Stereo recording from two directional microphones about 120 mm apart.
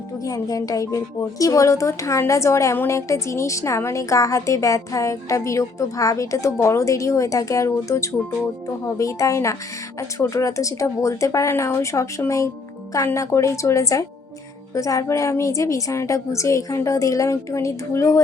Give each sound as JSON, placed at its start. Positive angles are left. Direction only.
{"t": 0.3, "sound": "speech", "side_deg": 30}